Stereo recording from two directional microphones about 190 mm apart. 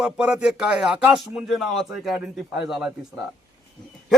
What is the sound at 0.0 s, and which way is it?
Speech, 5° right (ahead or behind).